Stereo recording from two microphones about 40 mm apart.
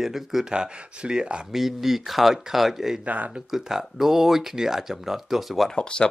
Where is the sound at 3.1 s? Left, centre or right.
Right.